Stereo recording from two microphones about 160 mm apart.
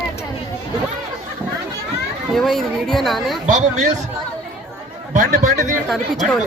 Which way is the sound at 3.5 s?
50° right (ahead or behind).